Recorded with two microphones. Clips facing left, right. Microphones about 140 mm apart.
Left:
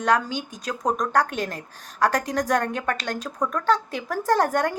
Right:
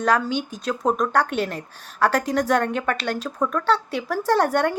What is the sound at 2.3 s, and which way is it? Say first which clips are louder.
A woman's voice: right 3 dB; 35° left (ahead or behind).